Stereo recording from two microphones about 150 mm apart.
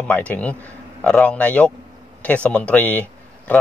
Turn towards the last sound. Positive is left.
turn(degrees=10)  # may be behind; listen again after turning